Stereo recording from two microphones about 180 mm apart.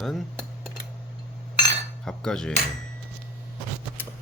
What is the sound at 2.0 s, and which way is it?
Cutlery, 5° left (ahead or behind).